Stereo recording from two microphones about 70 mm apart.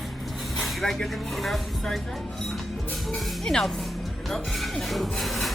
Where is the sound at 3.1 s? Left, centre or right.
Centre.